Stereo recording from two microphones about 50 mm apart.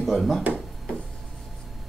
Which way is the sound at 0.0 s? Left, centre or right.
Centre.